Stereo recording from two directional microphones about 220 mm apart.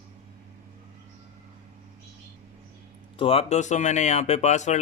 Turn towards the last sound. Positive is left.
turn(degrees=30)  # may be behind; listen again after turning